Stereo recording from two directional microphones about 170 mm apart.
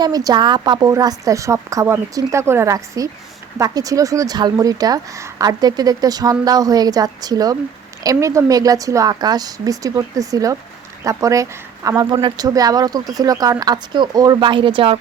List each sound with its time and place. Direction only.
0.0 s a woman's voice: 20° right (ahead or behind)